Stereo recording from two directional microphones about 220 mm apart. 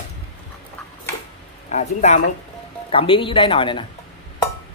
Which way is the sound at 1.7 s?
35° left (ahead or behind).